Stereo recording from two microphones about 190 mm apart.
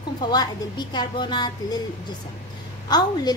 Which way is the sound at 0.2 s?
20° left (ahead or behind).